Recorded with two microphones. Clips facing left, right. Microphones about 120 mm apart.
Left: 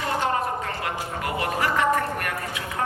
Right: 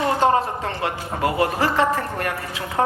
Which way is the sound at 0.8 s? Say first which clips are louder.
Right 5 dB; 30° right (ahead or behind).